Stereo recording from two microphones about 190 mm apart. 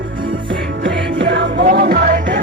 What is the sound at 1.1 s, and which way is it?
Music, 65° right (ahead or behind).